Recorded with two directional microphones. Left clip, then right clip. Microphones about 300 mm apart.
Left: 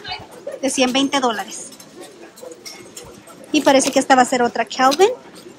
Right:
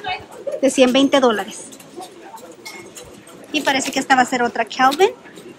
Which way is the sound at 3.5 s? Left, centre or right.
Centre.